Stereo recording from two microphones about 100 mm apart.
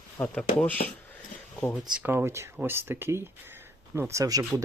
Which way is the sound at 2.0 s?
25° right (ahead or behind).